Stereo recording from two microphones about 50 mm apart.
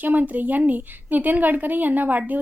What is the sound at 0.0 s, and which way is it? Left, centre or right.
A woman's voice, right.